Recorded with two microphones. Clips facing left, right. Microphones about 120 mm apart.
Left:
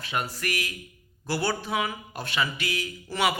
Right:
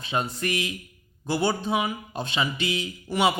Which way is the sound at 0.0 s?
25° right (ahead or behind).